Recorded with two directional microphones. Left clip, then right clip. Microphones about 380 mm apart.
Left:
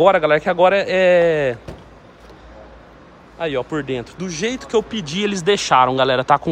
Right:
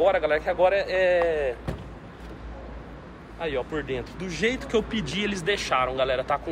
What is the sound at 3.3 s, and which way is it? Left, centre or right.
Speech, centre.